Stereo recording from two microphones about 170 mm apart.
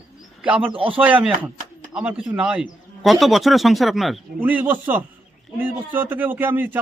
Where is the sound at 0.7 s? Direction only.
30° right (ahead or behind).